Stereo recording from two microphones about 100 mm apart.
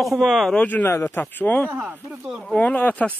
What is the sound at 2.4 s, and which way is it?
Speech, 15° left (ahead or behind).